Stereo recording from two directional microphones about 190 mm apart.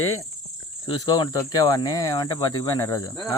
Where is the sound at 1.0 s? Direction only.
20° left (ahead or behind).